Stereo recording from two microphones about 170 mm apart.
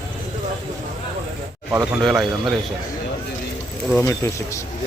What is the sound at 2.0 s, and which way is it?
Speech, centre (ahead or behind).